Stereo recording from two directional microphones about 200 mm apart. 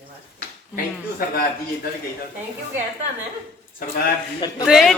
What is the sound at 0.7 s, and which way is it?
Speech, 45° left (ahead or behind).